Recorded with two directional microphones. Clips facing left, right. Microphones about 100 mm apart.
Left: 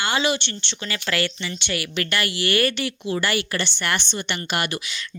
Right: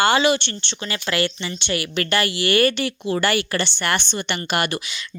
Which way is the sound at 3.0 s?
45° right (ahead or behind).